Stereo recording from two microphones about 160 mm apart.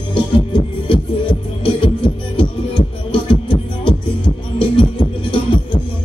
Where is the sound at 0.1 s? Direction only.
35° left (ahead or behind).